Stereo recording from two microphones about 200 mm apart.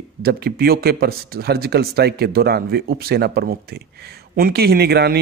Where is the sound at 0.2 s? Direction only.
50° right (ahead or behind).